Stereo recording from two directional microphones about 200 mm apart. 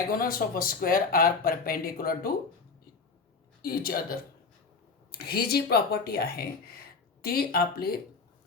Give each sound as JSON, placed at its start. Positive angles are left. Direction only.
{"t": 0.1, "sound": "speech", "side_deg": 45}
{"t": 3.6, "sound": "speech", "side_deg": 50}